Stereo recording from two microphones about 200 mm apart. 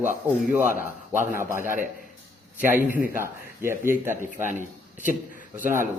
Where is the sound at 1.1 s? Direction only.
40° right (ahead or behind).